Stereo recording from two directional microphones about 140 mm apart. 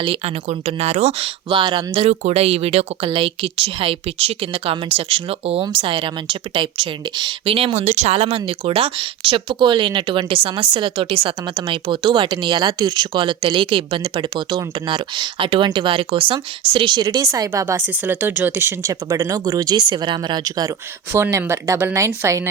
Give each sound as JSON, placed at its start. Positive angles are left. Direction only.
{"t": 0.0, "sound": "speech", "side_deg": -45}